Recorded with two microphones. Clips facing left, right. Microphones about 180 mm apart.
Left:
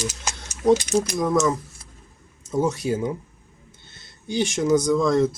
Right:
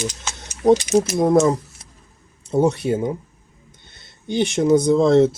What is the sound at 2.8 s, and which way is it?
Speech, 25° right (ahead or behind).